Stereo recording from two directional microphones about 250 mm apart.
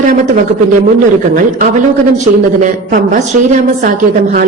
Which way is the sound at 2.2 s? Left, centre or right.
Right.